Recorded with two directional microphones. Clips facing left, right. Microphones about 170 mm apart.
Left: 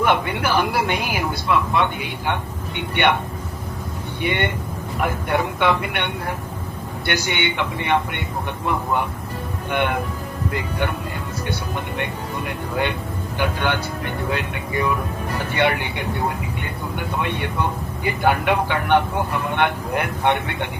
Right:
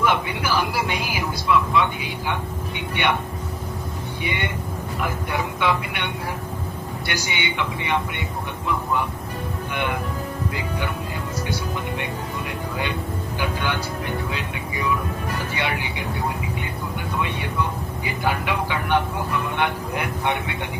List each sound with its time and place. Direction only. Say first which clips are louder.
0.0 s speech: left 3 dB; 55° left (ahead or behind)
4.2 s speech: left 6 dB; 55° left (ahead or behind)
13.4 s speech: left 4 dB; 60° left (ahead or behind)
17.2 s speech: left 1 dB; 60° left (ahead or behind)